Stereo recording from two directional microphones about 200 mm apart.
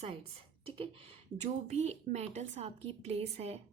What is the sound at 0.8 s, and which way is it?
A woman's voice, 30° right (ahead or behind).